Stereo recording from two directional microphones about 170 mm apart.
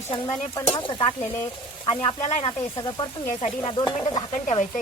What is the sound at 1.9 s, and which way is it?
Stir, 30° left (ahead or behind).